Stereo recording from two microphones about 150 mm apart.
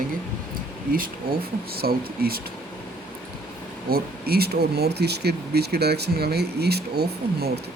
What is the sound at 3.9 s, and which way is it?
Speech, 90° right.